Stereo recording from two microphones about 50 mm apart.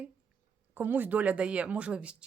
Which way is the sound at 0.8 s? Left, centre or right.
Right.